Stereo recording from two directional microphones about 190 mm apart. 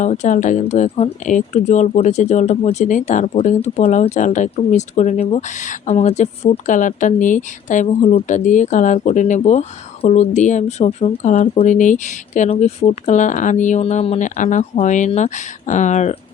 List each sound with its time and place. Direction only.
0.0 s speech: 40° left (ahead or behind)